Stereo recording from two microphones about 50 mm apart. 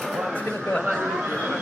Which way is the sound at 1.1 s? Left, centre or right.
Centre.